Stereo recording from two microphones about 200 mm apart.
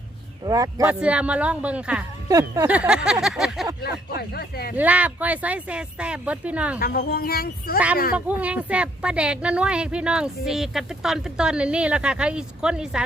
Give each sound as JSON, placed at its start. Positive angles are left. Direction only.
{"t": 0.4, "sound": "speech", "side_deg": -15}
{"t": 0.9, "sound": "a woman's voice", "side_deg": -5}
{"t": 2.3, "sound": "speech", "side_deg": -15}
{"t": 2.6, "sound": "a woman's voice", "side_deg": -5}
{"t": 4.2, "sound": "a woman's voice", "side_deg": 50}
{"t": 4.8, "sound": "speech", "side_deg": -10}
{"t": 6.7, "sound": "a woman's voice", "side_deg": 50}
{"t": 8.1, "sound": "a woman's voice", "side_deg": -5}